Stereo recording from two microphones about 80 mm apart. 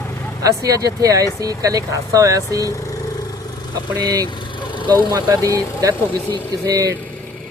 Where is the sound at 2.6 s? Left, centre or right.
Left.